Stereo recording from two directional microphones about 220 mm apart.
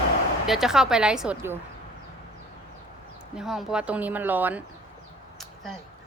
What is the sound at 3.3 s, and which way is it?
Speech, centre (ahead or behind).